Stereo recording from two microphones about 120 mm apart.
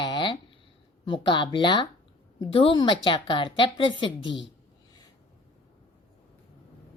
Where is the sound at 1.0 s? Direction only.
40° left (ahead or behind).